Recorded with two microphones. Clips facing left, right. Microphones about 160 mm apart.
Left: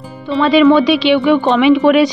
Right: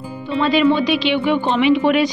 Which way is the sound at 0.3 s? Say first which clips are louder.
Left 6 dB; 75° left (ahead or behind).